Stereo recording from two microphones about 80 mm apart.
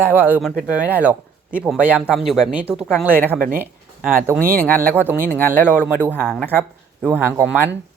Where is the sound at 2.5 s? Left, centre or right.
Centre.